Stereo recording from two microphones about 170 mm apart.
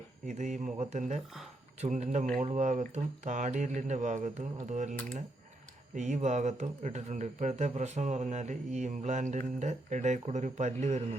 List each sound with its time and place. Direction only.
0.3 s speech: 45° right (ahead or behind)